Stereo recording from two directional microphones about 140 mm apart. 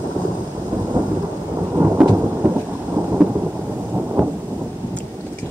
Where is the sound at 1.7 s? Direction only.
15° right (ahead or behind).